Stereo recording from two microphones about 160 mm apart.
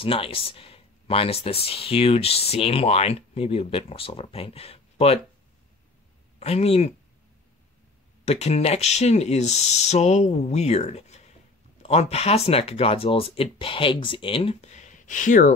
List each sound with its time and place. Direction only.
0.0 s speech: 35° left (ahead or behind)
6.4 s speech: 40° left (ahead or behind)
8.3 s speech: 40° left (ahead or behind)